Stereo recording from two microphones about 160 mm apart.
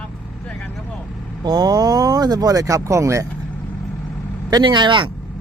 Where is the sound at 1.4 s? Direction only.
25° right (ahead or behind).